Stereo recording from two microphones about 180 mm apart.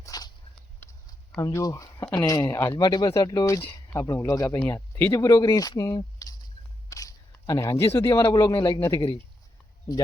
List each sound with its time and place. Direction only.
0.0 s dog: 20° left (ahead or behind)
1.4 s speech: 20° left (ahead or behind)